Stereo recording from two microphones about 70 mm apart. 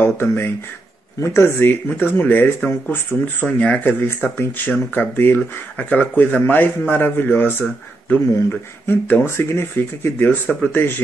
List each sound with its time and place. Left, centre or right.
0.0 s speech: left
3.4 s speech: centre
4.0 s speech: left
4.6 s speech: left